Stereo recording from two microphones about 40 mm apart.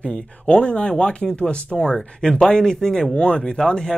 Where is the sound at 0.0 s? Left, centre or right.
Left.